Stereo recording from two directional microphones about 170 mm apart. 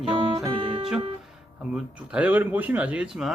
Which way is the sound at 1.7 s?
10° right (ahead or behind).